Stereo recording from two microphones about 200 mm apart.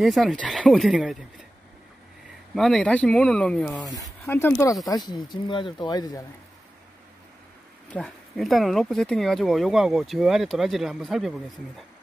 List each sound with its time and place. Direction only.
0.0 s speech: centre (ahead or behind)
2.5 s speech: centre (ahead or behind); by 6.2 s 20° left (ahead or behind)
7.9 s speech: centre (ahead or behind)